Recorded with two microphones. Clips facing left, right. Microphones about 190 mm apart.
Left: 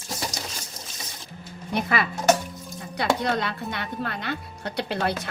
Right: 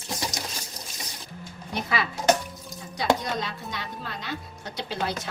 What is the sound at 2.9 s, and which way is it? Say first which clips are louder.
A woman's voice: left 1 dB; 65° left (ahead or behind).